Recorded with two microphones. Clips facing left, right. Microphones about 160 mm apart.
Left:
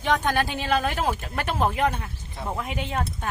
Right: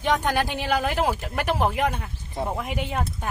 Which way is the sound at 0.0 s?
10° right (ahead or behind).